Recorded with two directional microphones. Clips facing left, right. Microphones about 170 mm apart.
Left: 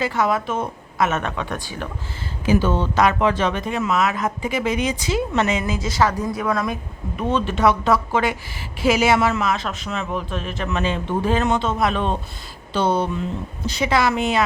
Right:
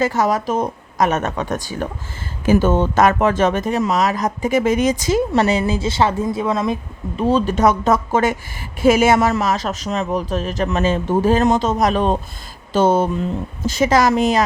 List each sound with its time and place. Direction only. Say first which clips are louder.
0.0 s speech: right 3 dB; 40° right (ahead or behind); by 6.7 s 25° right (ahead or behind)
7.2 s speech: right 4 dB; 35° right (ahead or behind)